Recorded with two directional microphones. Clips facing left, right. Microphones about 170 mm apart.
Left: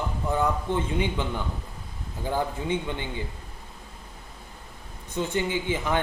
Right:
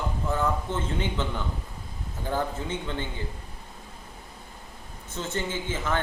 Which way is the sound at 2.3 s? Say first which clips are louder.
Left 2 dB; 15° left (ahead or behind).